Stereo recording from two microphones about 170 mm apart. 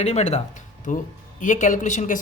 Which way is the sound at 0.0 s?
40° left (ahead or behind).